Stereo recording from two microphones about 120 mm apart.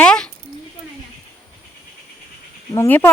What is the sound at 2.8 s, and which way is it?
Speech, 15° left (ahead or behind).